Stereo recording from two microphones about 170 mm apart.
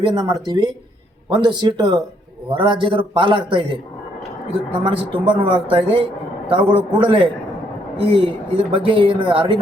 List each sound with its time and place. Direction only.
0.0 s a man's voice: 25° right (ahead or behind)
4.8 s speech: 30° right (ahead or behind)